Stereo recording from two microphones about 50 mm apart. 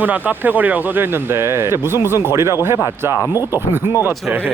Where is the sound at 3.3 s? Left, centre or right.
Right.